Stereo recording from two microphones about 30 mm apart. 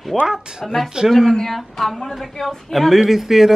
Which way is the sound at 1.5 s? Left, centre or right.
Centre.